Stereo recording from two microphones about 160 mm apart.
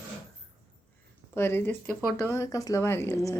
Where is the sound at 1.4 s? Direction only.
15° left (ahead or behind).